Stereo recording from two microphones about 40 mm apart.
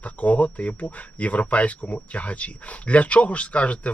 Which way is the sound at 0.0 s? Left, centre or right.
Left.